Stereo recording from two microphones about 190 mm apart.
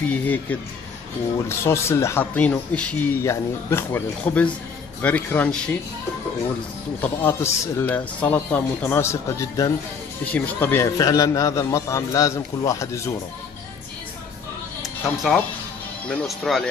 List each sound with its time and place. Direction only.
0.0 s speech: 10° left (ahead or behind)
7.0 s speech: 10° left (ahead or behind)
15.0 s speech: 5° left (ahead or behind)